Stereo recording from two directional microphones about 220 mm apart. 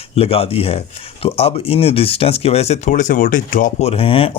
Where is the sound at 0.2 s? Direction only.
25° left (ahead or behind).